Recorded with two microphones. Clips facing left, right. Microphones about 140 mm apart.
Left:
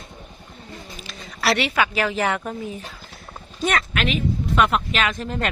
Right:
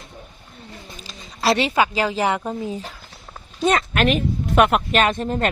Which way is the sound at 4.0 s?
50° right (ahead or behind).